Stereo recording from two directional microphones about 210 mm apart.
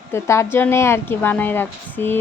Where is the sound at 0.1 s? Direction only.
15° left (ahead or behind).